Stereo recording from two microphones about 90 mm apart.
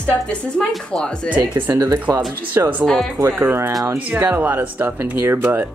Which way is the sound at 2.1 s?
40° right (ahead or behind).